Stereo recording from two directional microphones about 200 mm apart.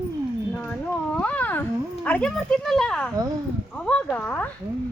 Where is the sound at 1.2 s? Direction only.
10° left (ahead or behind).